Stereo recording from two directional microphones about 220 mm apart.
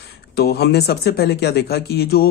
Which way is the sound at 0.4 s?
45° left (ahead or behind).